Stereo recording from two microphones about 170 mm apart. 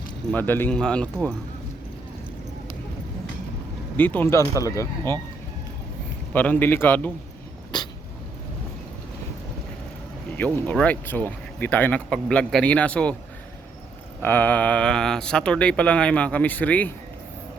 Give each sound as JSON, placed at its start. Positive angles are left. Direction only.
{"t": 0.3, "sound": "speech", "side_deg": 10}
{"t": 3.9, "sound": "speech", "side_deg": 10}
{"t": 6.3, "sound": "speech", "side_deg": 10}
{"t": 7.7, "sound": "dog", "side_deg": 25}
{"t": 10.3, "sound": "speech", "side_deg": 10}
{"t": 14.2, "sound": "speech", "side_deg": 10}